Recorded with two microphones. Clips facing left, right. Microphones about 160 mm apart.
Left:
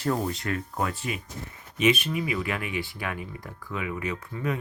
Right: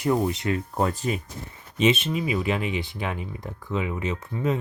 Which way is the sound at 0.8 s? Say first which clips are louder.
Right 5 dB; 35° right (ahead or behind).